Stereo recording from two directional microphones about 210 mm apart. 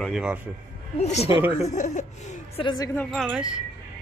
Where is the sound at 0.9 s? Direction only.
30° left (ahead or behind).